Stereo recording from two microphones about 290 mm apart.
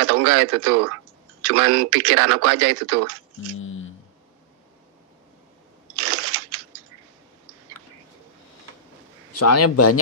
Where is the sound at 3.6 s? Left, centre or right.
Left.